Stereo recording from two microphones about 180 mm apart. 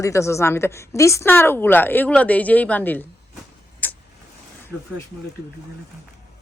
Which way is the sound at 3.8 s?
10° left (ahead or behind).